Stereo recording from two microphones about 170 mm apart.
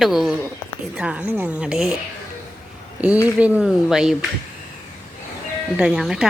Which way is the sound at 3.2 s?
5° right (ahead or behind).